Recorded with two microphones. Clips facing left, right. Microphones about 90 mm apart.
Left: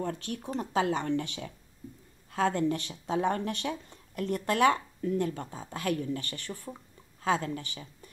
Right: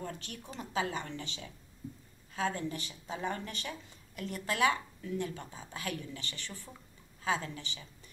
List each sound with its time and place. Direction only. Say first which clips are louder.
0.0 s speech: left 8 dB; 55° left (ahead or behind)